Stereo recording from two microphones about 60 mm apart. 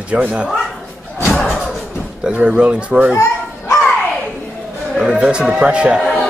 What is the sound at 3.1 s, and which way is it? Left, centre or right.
Bow-wow, left.